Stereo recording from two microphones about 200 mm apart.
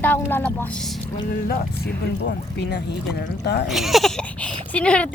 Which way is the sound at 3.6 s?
Centre (ahead or behind).